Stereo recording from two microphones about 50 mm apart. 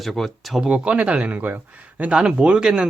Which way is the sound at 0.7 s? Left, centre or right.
Right.